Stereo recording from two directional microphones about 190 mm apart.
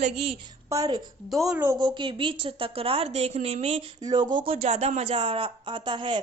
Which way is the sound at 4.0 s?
20° right (ahead or behind).